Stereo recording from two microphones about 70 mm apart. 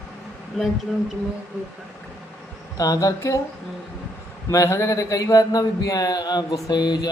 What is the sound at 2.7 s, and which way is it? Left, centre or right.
Speech, left.